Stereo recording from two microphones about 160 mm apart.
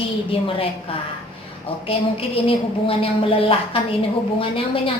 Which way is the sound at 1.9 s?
35° left (ahead or behind).